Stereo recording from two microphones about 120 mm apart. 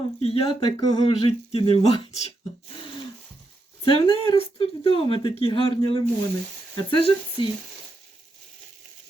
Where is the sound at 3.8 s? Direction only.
55° left (ahead or behind).